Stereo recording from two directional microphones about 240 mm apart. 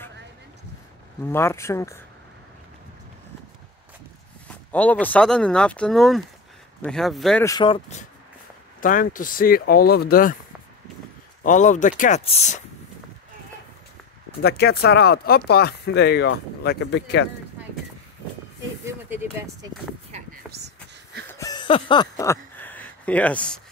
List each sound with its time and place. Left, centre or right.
1.3 s speech: centre
4.7 s speech: centre
7.4 s speech: centre
8.8 s speech: left
11.4 s speech: left
14.4 s speech: left
20.4 s a sound: centre
21.3 s a sound: centre